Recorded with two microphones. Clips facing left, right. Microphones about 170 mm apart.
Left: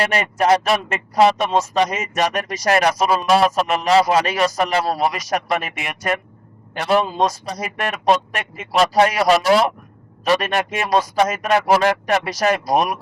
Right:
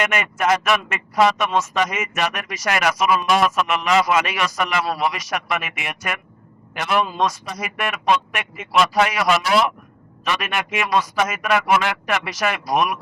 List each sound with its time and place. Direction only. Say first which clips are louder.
0.0 s speech: left 3 dB; 35° left (ahead or behind)